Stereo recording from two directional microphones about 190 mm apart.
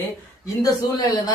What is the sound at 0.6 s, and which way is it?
Speech, 20° left (ahead or behind).